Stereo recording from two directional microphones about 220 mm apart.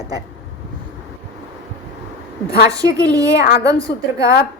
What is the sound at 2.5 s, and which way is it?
Speech, 15° right (ahead or behind).